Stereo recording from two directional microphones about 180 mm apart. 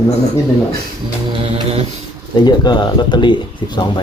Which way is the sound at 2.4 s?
25° left (ahead or behind).